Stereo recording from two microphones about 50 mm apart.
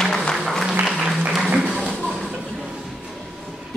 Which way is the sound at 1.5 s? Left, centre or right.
Centre.